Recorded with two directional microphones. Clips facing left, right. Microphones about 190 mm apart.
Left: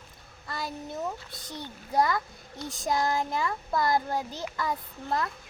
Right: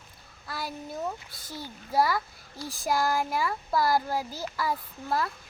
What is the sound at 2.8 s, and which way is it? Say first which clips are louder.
A child's voice: right 1 dB; 5° right (ahead or behind).